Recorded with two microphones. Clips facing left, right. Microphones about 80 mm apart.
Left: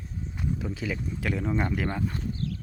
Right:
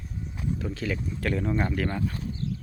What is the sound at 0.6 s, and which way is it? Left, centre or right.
Speech, centre.